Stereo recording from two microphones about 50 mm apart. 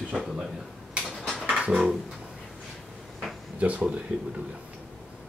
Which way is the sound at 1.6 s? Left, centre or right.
Centre.